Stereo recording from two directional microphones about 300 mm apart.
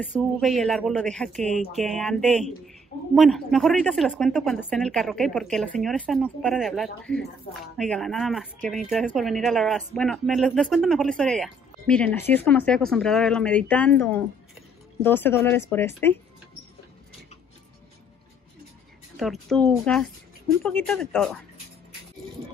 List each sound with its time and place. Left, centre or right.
0.0 s speech: centre
19.1 s speech: centre